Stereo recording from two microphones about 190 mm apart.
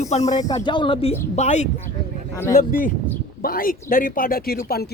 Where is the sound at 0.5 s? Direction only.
25° left (ahead or behind).